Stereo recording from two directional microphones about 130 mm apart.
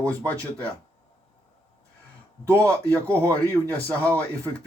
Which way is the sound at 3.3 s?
10° left (ahead or behind).